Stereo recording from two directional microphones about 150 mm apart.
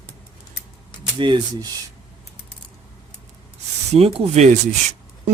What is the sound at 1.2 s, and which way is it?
Speech, 30° right (ahead or behind).